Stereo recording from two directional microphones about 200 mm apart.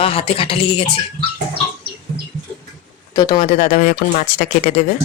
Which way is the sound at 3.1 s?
20° left (ahead or behind).